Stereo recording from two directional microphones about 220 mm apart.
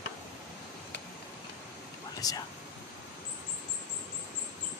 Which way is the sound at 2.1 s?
15° left (ahead or behind).